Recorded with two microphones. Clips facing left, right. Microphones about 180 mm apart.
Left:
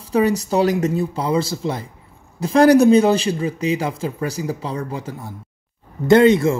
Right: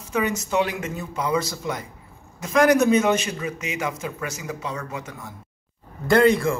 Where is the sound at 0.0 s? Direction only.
35° left (ahead or behind).